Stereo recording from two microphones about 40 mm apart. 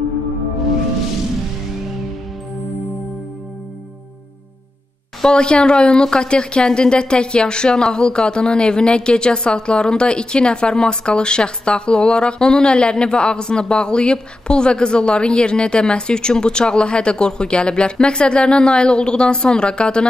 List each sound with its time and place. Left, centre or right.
5.2 s speech: left